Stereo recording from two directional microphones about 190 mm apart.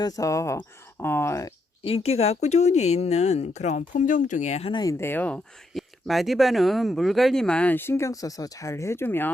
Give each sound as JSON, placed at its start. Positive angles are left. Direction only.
{"t": 0.0, "sound": "speech", "side_deg": 15}
{"t": 1.8, "sound": "speech", "side_deg": 30}